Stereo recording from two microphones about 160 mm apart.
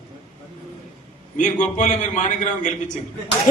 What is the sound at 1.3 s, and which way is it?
A man's voice, 50° left (ahead or behind).